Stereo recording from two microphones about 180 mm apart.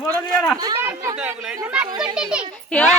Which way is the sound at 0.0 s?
5° left (ahead or behind).